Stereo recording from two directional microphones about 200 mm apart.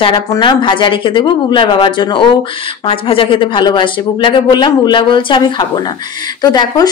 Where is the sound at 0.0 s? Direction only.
20° left (ahead or behind).